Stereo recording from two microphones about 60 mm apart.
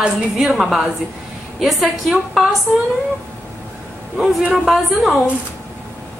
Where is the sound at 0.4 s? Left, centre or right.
Centre.